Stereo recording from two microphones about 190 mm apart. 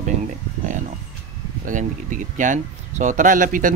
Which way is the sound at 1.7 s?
45° right (ahead or behind).